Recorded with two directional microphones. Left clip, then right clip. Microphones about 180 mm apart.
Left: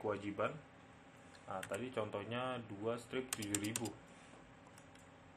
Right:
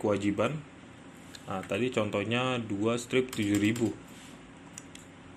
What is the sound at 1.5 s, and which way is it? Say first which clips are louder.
Speech: right 12 dB; 35° right (ahead or behind).